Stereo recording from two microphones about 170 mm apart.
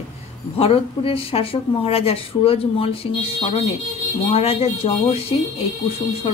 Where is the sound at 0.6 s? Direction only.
35° left (ahead or behind).